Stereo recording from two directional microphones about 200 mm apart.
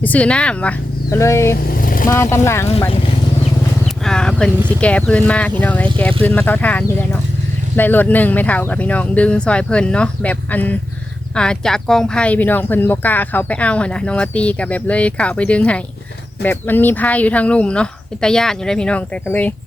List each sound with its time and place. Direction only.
0.0 s speech: 5° left (ahead or behind)
1.5 s vehicle: 45° left (ahead or behind)
2.0 s speech: 15° left (ahead or behind)
3.8 s speech: 5° left (ahead or behind)